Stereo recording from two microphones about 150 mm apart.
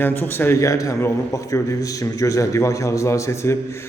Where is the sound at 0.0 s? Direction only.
15° left (ahead or behind).